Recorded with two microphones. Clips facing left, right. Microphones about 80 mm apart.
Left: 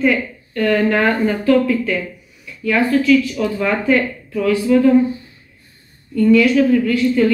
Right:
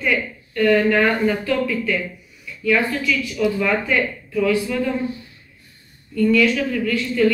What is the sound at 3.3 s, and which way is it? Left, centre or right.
Speech, left.